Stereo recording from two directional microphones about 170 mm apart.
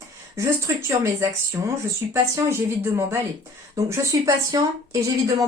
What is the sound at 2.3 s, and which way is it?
Speech, 15° right (ahead or behind).